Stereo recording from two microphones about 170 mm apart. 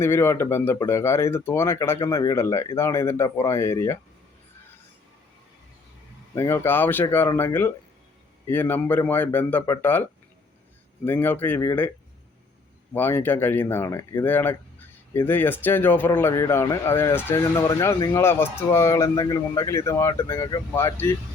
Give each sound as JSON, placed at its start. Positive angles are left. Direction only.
{"t": 0.0, "sound": "speech", "side_deg": 15}
{"t": 6.3, "sound": "speech", "side_deg": 15}
{"t": 12.9, "sound": "speech", "side_deg": 10}